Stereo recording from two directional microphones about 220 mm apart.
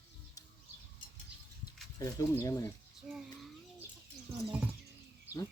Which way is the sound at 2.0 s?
15° left (ahead or behind).